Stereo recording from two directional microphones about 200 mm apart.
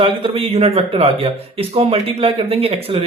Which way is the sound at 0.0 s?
30° right (ahead or behind).